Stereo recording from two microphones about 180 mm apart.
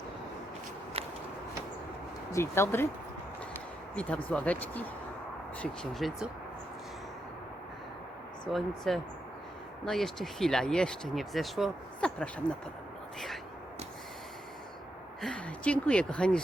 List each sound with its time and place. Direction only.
0.9 s walk: 35° right (ahead or behind)
2.3 s speech: 15° left (ahead or behind)
3.9 s speech: 5° left (ahead or behind)
8.4 s speech: centre (ahead or behind)
15.2 s speech: 5° left (ahead or behind)